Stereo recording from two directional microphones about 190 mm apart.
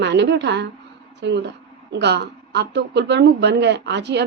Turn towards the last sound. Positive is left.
turn(degrees=-65)  # may be behind; listen again after turning